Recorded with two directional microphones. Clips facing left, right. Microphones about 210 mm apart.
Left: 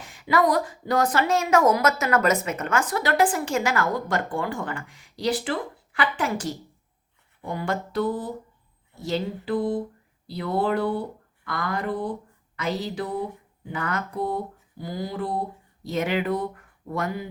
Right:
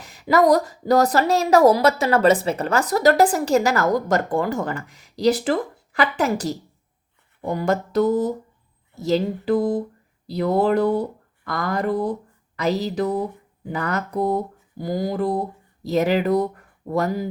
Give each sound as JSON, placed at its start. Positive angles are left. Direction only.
{"t": 0.0, "sound": "a woman's voice", "side_deg": -40}
{"t": 9.0, "sound": "a sound", "side_deg": -40}
{"t": 10.2, "sound": "a woman's voice", "side_deg": -40}